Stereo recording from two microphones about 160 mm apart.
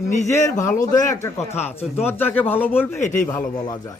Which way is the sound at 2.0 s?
15° left (ahead or behind).